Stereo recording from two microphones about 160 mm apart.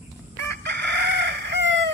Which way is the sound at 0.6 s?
90° right.